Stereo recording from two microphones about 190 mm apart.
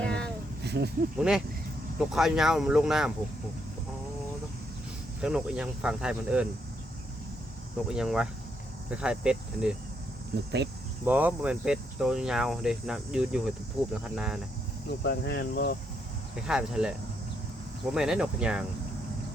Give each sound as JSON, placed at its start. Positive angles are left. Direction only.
{"t": 0.0, "sound": "a sound", "side_deg": 5}
{"t": 0.6, "sound": "a sound", "side_deg": -60}
{"t": 1.2, "sound": "speech", "side_deg": -5}
{"t": 5.2, "sound": "speech", "side_deg": -5}
{"t": 7.9, "sound": "speech", "side_deg": -5}
{"t": 10.3, "sound": "speech", "side_deg": -65}
{"t": 11.0, "sound": "speech", "side_deg": -10}
{"t": 15.0, "sound": "speech", "side_deg": 60}
{"t": 16.3, "sound": "speech", "side_deg": -5}
{"t": 17.9, "sound": "speech", "side_deg": -5}